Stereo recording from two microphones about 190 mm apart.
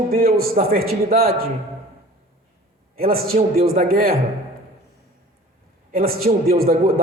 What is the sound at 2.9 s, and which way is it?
A man's voice, 50° right (ahead or behind).